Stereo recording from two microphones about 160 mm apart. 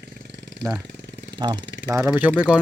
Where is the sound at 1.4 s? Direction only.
30° right (ahead or behind).